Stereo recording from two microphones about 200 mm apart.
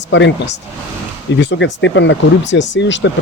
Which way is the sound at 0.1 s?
65° left (ahead or behind).